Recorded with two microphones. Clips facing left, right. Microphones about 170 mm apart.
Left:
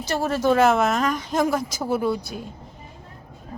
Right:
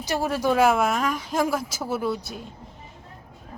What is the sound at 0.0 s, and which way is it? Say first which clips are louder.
Speech: left 2 dB; 15° right (ahead or behind).